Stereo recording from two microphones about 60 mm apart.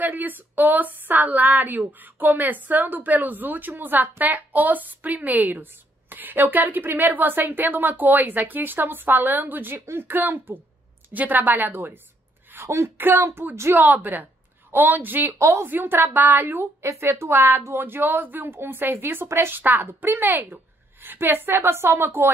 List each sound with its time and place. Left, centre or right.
0.0 s a woman's voice: right
12.6 s speech: right
12.9 s a woman's voice: right
13.2 s speech: right
13.7 s a woman's voice: right
15.3 s a woman's voice: right
15.6 s a woman's voice: right